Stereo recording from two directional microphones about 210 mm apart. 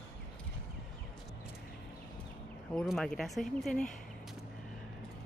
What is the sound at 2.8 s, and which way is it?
Speech, centre (ahead or behind).